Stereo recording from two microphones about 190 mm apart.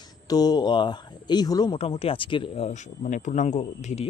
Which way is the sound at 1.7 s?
30° left (ahead or behind).